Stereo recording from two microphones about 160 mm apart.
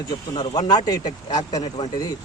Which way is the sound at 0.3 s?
25° left (ahead or behind).